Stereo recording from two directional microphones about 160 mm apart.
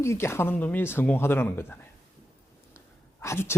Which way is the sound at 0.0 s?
15° left (ahead or behind).